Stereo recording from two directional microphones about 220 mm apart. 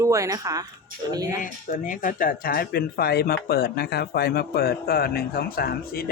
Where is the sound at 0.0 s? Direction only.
15° right (ahead or behind).